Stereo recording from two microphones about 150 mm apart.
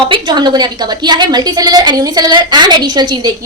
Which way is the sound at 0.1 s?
30° right (ahead or behind).